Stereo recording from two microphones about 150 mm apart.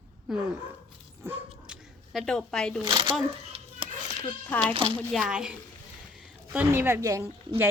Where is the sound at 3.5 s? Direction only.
40° right (ahead or behind).